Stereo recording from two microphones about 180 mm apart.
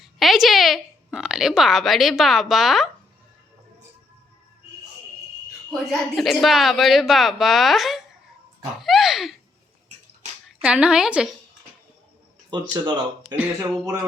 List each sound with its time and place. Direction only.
0.0 s a woman's voice: centre (ahead or behind)
5.9 s a woman's voice: centre (ahead or behind)
8.8 s a sound: centre (ahead or behind)
10.6 s a woman's voice: 5° right (ahead or behind)
12.5 s speech: 25° right (ahead or behind)
13.2 s speech: 5° right (ahead or behind)